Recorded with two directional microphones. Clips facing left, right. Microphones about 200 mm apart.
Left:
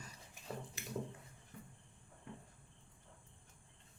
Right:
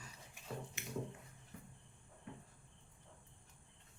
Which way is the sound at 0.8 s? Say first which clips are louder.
Left 1 dB; 35° left (ahead or behind).